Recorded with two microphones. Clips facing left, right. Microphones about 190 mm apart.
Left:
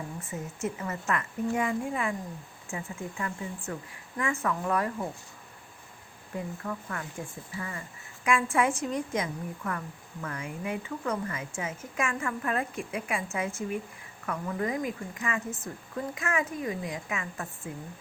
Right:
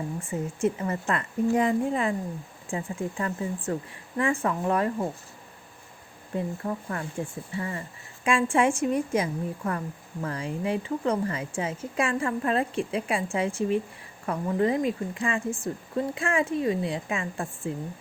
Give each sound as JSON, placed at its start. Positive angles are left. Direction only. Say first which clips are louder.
{"t": 0.2, "sound": "a woman's voice", "louder": "right 8 dB", "side_deg": -30}
{"t": 6.3, "sound": "a woman's voice", "louder": "right 5 dB", "side_deg": -30}